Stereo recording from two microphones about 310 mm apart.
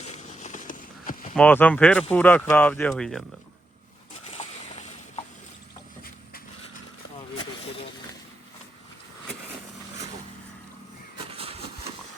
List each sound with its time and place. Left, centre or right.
0.0 s clip-clop: left
1.4 s speech: centre
4.1 s a sound: left
7.3 s vehicle: centre